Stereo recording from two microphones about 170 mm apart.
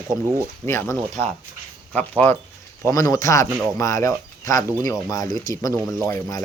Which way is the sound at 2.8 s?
20° left (ahead or behind).